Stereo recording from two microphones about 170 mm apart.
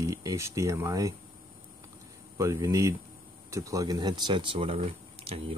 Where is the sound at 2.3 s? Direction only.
20° right (ahead or behind).